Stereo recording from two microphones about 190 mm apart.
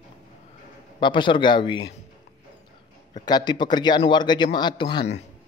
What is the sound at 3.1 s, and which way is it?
A man's voice, 20° left (ahead or behind).